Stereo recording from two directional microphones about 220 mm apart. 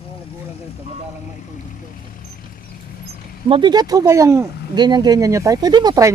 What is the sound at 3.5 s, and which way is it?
Speech, 20° right (ahead or behind).